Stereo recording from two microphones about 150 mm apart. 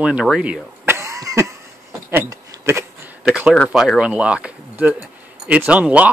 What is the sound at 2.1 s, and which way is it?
Speech, 15° right (ahead or behind).